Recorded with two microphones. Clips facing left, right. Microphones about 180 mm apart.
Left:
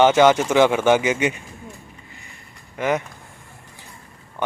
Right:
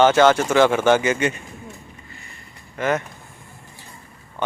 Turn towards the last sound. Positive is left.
turn(degrees=15)  # may be behind; listen again after turning